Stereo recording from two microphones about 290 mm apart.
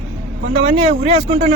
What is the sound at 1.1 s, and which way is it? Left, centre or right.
Speech, right.